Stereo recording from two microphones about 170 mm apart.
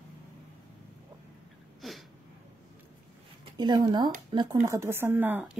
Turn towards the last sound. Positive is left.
turn(degrees=-10)  # may be behind; listen again after turning